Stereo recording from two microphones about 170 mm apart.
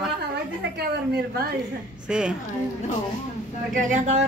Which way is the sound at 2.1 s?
5° right (ahead or behind).